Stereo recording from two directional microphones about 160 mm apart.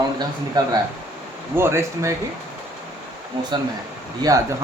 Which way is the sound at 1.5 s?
15° right (ahead or behind).